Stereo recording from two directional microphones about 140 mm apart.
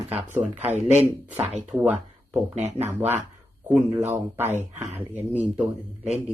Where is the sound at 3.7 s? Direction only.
15° right (ahead or behind).